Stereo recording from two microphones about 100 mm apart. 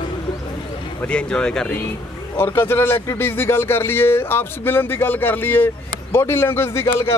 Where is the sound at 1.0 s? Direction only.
10° left (ahead or behind).